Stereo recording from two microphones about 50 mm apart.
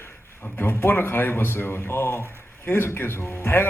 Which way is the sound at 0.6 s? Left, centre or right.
Left.